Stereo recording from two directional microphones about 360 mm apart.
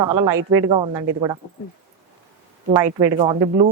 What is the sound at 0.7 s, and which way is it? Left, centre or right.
Speech, centre.